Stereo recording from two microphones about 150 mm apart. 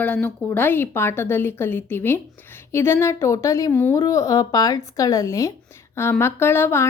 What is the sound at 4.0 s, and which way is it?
A woman's voice, 20° left (ahead or behind).